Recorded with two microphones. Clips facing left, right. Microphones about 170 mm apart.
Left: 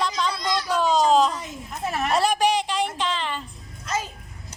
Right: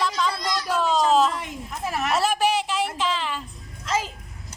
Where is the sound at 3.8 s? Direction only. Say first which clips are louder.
Right 2 dB; 90° right.